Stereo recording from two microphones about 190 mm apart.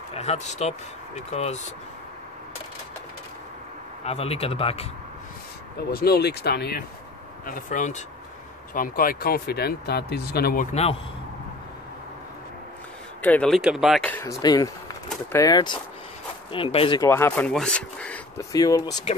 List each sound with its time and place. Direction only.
0.1 s speech: 35° left (ahead or behind)
4.0 s speech: 35° left (ahead or behind)
5.8 s speech: 55° left (ahead or behind)
7.4 s speech: 45° left (ahead or behind)
13.2 s speech: 5° left (ahead or behind)
14.1 s speech: 15° left (ahead or behind)
17.0 s speech: 10° left (ahead or behind)
18.4 s speech: 20° left (ahead or behind)